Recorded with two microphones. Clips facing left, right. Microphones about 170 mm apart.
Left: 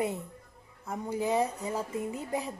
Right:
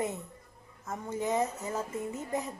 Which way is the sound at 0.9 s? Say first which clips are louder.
Left 2 dB; 10° left (ahead or behind).